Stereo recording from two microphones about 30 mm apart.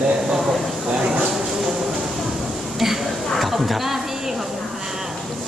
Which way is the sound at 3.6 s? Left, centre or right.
Centre.